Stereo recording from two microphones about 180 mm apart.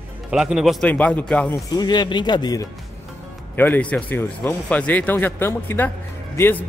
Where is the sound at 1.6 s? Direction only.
25° left (ahead or behind).